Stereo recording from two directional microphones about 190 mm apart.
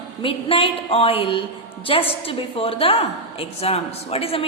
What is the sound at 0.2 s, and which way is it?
A woman's voice, 30° left (ahead or behind).